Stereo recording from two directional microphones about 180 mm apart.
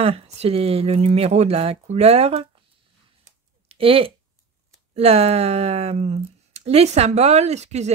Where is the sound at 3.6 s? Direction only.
30° right (ahead or behind).